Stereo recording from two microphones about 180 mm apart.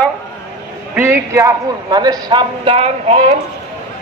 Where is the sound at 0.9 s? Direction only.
10° right (ahead or behind).